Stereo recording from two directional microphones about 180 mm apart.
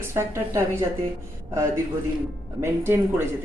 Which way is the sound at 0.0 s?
15° right (ahead or behind).